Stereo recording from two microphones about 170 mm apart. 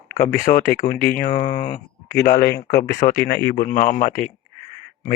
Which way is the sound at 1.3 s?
45° left (ahead or behind).